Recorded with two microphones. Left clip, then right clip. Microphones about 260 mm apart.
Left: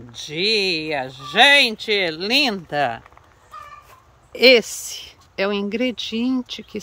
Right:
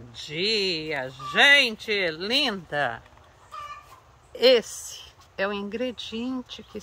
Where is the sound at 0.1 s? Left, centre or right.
Left.